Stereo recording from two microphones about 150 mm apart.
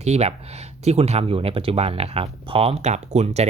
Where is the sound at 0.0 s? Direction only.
45° right (ahead or behind).